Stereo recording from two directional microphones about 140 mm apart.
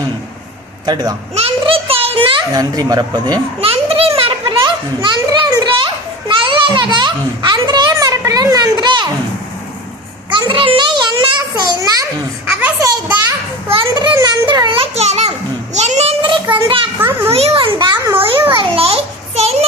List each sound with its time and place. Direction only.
0.9 s speech: 30° right (ahead or behind)
1.4 s a sound: 40° right (ahead or behind)
2.5 s speech: 25° right (ahead or behind)
3.6 s children playing: 45° right (ahead or behind)
10.3 s a child's voice: 35° right (ahead or behind)
12.5 s a child's voice: 10° right (ahead or behind)
13.7 s a child's voice: 35° right (ahead or behind)
16.2 s child singing: 35° right (ahead or behind)
17.0 s a child's voice: 15° right (ahead or behind)
17.3 s a child's voice: 45° right (ahead or behind)